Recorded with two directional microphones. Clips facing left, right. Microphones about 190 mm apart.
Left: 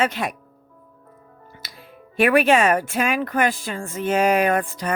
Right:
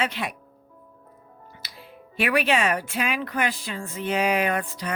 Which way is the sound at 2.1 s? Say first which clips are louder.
Left 6 dB; 50° left (ahead or behind).